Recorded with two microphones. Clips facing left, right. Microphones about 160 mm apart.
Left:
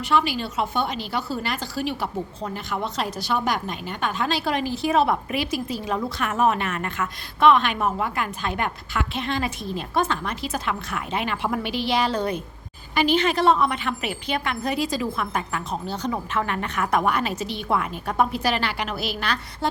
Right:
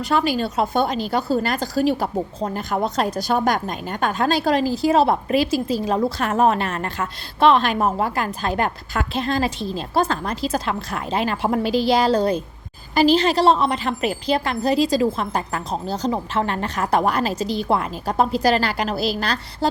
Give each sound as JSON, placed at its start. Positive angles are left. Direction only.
{"t": 0.0, "sound": "a woman's voice", "side_deg": -40}